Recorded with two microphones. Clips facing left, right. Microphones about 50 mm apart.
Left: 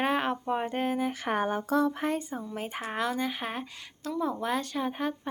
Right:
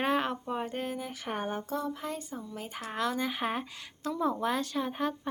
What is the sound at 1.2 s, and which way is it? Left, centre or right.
Speech, left.